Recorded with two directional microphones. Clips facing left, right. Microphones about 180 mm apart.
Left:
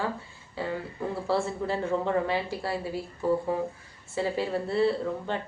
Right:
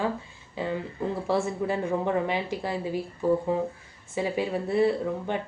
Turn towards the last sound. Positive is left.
turn(degrees=-15)  # may be behind; listen again after turning